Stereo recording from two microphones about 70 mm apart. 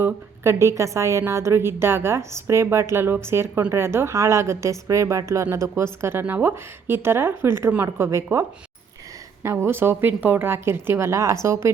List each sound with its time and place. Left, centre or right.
0.0 s a woman's voice: right